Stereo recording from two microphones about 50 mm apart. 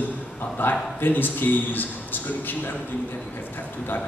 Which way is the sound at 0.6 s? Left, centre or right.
Left.